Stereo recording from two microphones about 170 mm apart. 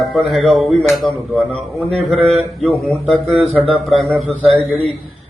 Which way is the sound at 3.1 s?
5° left (ahead or behind).